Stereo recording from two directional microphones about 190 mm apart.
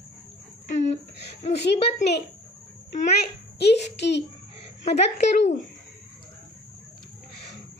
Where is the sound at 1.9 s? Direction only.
60° left (ahead or behind).